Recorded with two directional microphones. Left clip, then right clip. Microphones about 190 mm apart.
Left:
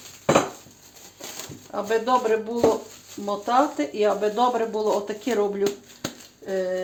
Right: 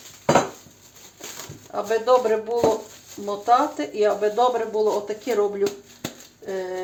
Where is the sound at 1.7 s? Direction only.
25° left (ahead or behind).